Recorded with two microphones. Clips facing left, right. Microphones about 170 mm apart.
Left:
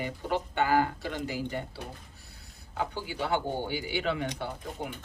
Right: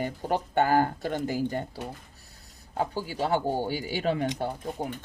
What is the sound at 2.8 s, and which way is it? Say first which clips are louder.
Speech: right 4 dB; 40° right (ahead or behind).